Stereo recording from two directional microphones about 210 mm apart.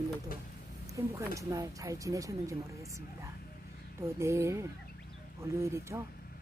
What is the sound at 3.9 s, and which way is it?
Speech, 15° right (ahead or behind).